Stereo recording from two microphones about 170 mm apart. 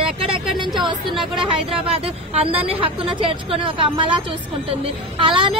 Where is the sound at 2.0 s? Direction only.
35° right (ahead or behind).